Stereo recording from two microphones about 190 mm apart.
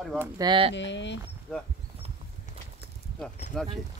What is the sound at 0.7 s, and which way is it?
Speech, 70° left (ahead or behind).